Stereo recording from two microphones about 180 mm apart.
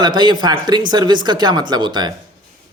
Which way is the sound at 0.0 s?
25° right (ahead or behind).